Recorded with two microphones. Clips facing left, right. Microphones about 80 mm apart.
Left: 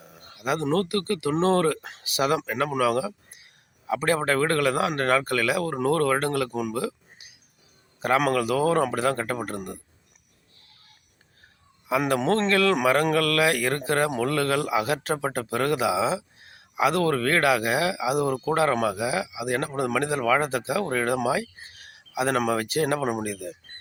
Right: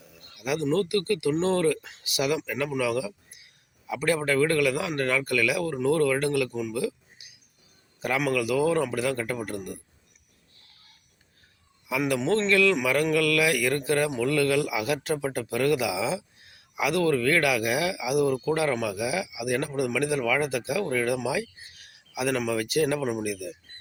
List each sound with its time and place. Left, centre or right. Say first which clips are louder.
0.0 s a sound: left 4 dB; left
0.7 s a man's voice: right 2 dB; left
1.3 s a man's voice: left 3 dB; left
6.7 s a sound: even; left
8.0 s a man's voice: left 4 dB; left
11.9 s a man's voice: left 2 dB; left
23.3 s a man's voice: even; left